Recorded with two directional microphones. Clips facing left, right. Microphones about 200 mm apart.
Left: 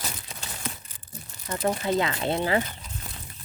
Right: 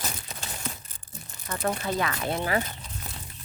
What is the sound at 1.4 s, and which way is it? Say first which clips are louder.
Speech: left 3 dB; 20° left (ahead or behind).